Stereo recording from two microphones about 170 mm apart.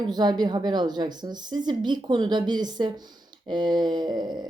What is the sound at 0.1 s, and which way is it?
Speech, 25° right (ahead or behind).